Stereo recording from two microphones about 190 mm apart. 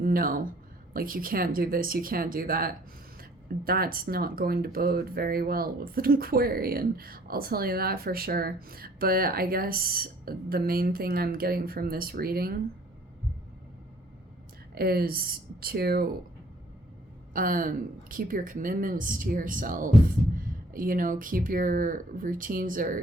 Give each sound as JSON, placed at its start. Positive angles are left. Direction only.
{"t": 0.0, "sound": "speech", "side_deg": -50}
{"t": 14.8, "sound": "speech", "side_deg": -55}
{"t": 17.3, "sound": "speech", "side_deg": -45}